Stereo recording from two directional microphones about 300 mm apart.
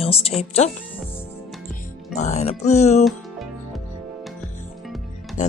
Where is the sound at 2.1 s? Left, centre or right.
Left.